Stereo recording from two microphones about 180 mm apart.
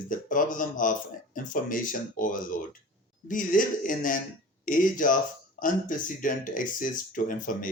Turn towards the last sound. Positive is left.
turn(degrees=50)  # may be behind; listen again after turning